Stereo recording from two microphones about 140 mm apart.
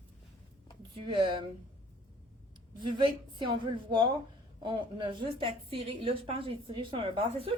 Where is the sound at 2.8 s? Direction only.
35° right (ahead or behind).